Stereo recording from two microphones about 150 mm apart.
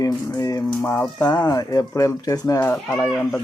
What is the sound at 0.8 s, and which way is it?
Speech, 15° left (ahead or behind).